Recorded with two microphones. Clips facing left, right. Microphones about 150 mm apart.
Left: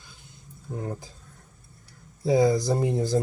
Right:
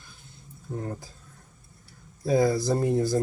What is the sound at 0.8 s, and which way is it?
Speech, 15° left (ahead or behind).